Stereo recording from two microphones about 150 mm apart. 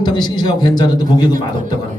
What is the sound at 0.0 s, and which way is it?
A man's voice, 30° left (ahead or behind).